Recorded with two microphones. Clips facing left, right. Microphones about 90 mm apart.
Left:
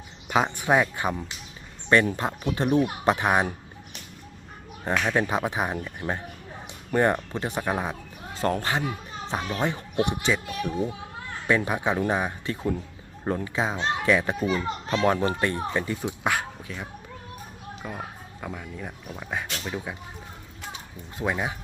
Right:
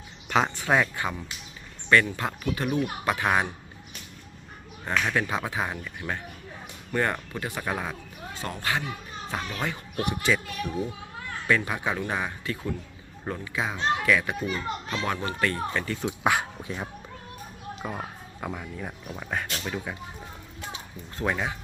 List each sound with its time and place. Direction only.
0.3 s speech: 10° left (ahead or behind)
2.1 s a child's voice: 25° left (ahead or behind)
4.9 s a child's voice: 15° left (ahead or behind)
6.0 s speech: 40° left (ahead or behind)
6.9 s a child's voice: 25° left (ahead or behind)
8.4 s a child's voice: 40° left (ahead or behind)
9.3 s a child's voice: 25° left (ahead or behind)
13.2 s a child's voice: 35° left (ahead or behind); by 16.1 s 15° left (ahead or behind)
16.2 s speech: 5° right (ahead or behind)
16.6 s a child's voice: 25° right (ahead or behind)
17.8 s speech: 10° right (ahead or behind); by 20.0 s 5° left (ahead or behind)
21.2 s speech: 15° left (ahead or behind)